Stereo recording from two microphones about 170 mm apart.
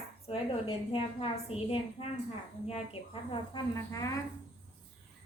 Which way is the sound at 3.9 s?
20° left (ahead or behind).